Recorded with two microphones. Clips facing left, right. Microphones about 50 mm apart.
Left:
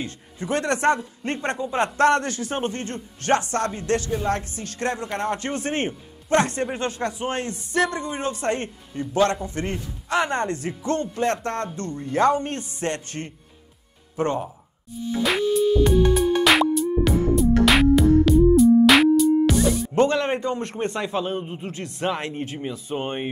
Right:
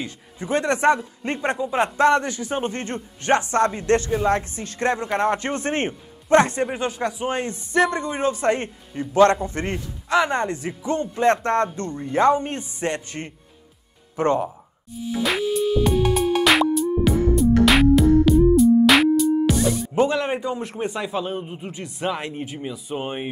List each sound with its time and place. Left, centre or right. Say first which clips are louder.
0.0 s a man's voice: even; right
6.7 s a man's voice: right 1 dB; centre
9.1 s a man's voice: right 5 dB; right
10.2 s a man's voice: right 1 dB; centre
11.4 s a man's voice: right 6 dB; right
14.1 s speech: right 4 dB; right
15.2 s music: left 2 dB; centre
20.0 s a man's voice: left 1 dB; centre
21.4 s a man's voice: left 1 dB; centre
21.6 s speech: left 1 dB; centre
22.0 s a man's voice: even; centre